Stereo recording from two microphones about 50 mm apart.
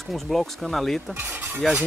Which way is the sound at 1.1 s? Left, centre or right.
Right.